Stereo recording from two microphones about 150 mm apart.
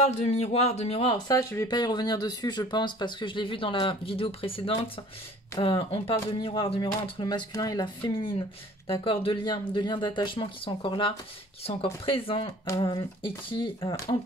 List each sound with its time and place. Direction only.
0.0 s a man's voice: 50° left (ahead or behind)
1.3 s speech: 20° left (ahead or behind)